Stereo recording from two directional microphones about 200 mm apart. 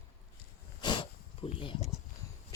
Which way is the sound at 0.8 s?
25° left (ahead or behind).